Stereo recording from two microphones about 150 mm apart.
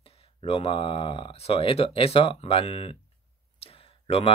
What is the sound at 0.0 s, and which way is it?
Speech, 40° left (ahead or behind).